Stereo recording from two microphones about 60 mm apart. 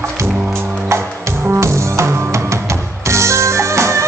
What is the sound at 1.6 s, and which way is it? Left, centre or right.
Music, right.